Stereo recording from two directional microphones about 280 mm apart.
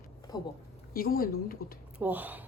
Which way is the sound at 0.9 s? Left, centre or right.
Left.